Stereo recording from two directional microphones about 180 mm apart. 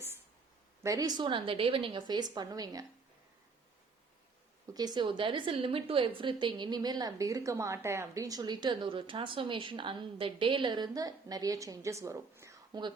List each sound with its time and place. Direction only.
0.8 s a woman's voice: 20° right (ahead or behind)
4.7 s a woman's voice: 20° right (ahead or behind)